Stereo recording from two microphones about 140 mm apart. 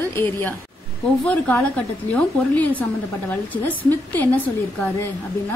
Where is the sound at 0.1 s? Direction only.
15° left (ahead or behind).